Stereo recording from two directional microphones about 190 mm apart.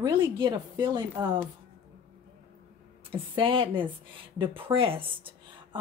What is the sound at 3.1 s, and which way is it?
Speech, 25° right (ahead or behind).